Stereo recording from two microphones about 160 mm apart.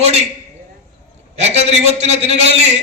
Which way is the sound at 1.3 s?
40° right (ahead or behind).